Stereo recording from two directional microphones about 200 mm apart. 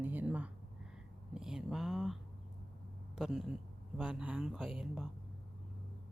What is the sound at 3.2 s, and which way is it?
Speech, centre (ahead or behind).